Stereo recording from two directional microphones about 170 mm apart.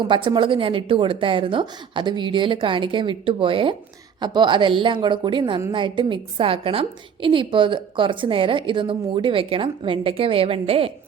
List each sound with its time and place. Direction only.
0.0 s a woman's voice: 30° right (ahead or behind)